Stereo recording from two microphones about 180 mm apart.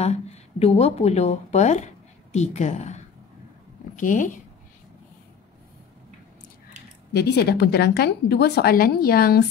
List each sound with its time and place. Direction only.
0.0 s a woman's voice: 35° left (ahead or behind)
7.2 s a woman's voice: 65° left (ahead or behind)